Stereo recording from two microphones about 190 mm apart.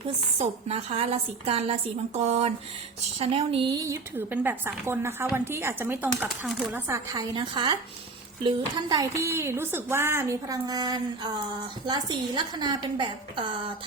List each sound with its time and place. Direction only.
0.3 s a woman's voice: 35° right (ahead or behind)